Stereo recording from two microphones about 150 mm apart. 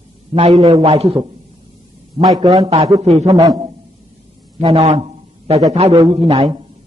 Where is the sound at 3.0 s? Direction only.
45° right (ahead or behind).